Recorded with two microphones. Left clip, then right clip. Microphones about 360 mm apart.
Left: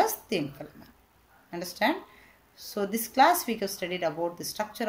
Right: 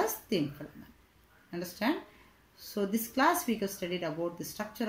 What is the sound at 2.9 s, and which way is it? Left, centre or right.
Speech, left.